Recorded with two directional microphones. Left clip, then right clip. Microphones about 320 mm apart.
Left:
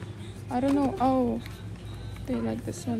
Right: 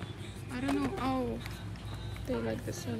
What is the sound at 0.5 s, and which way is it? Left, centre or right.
Speech, centre.